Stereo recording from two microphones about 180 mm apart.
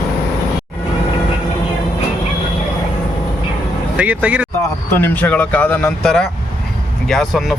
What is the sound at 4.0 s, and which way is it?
Speech, 10° right (ahead or behind).